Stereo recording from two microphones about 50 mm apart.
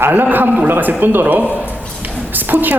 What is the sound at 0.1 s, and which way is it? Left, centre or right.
Speech, right.